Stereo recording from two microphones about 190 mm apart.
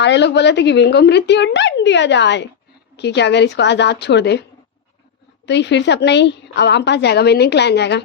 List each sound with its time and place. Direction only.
0.0 s a woman's voice: 65° left (ahead or behind)
5.5 s a woman's voice: 65° left (ahead or behind)